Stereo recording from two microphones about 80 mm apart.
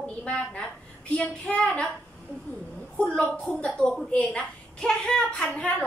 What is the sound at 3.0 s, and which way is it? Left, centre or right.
A woman's voice, centre.